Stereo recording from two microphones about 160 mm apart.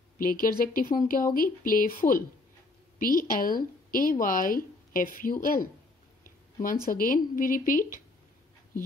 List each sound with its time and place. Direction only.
0.2 s speech: 60° left (ahead or behind)
6.2 s a sound: 55° left (ahead or behind)
6.9 s speech: 60° left (ahead or behind)